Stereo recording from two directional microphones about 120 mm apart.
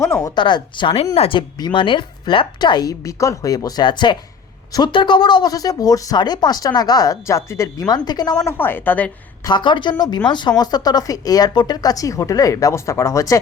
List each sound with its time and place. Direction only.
0.0 s a woman's voice: 25° left (ahead or behind); by 1.0 s 40° left (ahead or behind)
1.1 s speech: 55° left (ahead or behind)
1.4 s speech: 40° left (ahead or behind)
8.4 s a woman's voice: 15° left (ahead or behind)
9.4 s speech: 40° left (ahead or behind)